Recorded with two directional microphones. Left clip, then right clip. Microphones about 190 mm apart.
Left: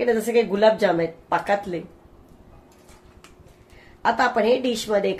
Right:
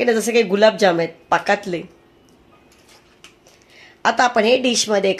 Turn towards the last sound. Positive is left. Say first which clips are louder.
# right 5 dB
turn(degrees=-40)  # may be behind; listen again after turning